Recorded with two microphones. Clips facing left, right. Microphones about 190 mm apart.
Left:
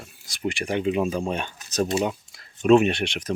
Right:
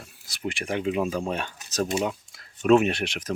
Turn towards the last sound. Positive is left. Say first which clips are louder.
# left 2 dB
turn(degrees=-5)  # may be behind; listen again after turning